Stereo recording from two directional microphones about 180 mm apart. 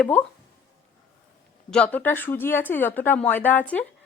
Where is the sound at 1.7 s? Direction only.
5° left (ahead or behind).